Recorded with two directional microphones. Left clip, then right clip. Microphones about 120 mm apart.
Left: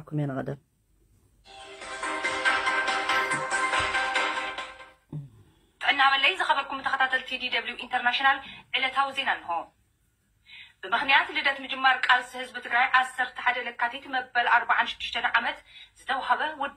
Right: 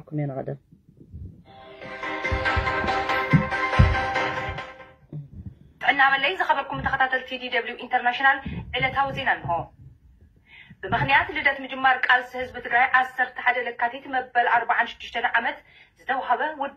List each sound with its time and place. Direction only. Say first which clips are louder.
0.3 s speech: right 1 dB; centre (ahead or behind)
1.6 s music: right 1 dB; 20° right (ahead or behind); by 3.3 s 45° right (ahead or behind)
3.3 s music: right 2 dB; 25° right (ahead or behind)
3.7 s music: right 1 dB; 40° right (ahead or behind)
5.8 s a woman's voice: right 2 dB; 35° right (ahead or behind)